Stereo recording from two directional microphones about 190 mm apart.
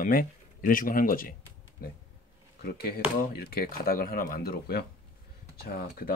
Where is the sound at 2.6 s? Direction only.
55° left (ahead or behind).